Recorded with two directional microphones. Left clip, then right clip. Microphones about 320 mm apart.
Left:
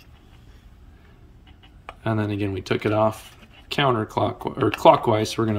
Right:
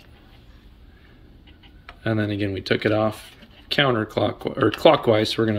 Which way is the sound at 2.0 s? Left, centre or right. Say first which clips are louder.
Right 1 dB; centre.